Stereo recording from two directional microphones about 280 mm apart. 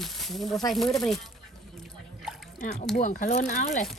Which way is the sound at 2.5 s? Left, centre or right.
Left.